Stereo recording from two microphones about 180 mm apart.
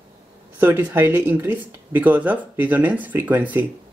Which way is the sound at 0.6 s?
10° right (ahead or behind).